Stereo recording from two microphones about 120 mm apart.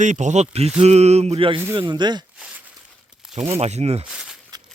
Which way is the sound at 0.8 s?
65° right (ahead or behind).